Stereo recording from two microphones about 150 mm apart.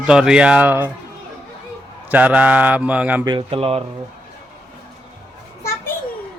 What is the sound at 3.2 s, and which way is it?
Speech, 35° right (ahead or behind).